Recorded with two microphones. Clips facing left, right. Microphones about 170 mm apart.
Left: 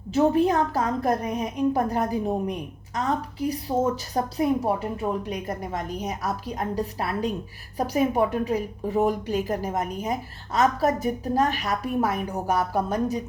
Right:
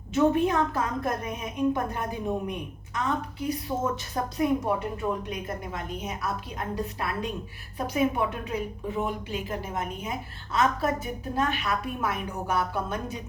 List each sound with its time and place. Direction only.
0.1 s a woman's voice: 35° left (ahead or behind)